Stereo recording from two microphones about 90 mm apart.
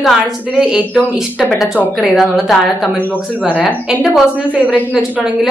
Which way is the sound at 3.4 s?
15° right (ahead or behind).